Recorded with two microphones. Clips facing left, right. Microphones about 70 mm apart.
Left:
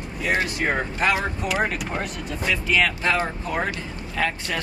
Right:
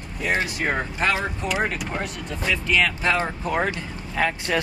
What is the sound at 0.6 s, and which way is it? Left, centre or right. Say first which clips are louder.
Speech: left 1 dB; centre.